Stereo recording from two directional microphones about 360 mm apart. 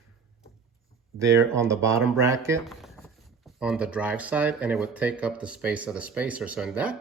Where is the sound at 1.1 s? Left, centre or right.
Centre.